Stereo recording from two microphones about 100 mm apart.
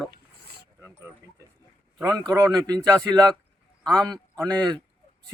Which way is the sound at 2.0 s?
35° right (ahead or behind).